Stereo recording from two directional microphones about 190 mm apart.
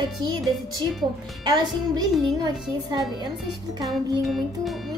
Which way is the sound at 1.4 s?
25° right (ahead or behind).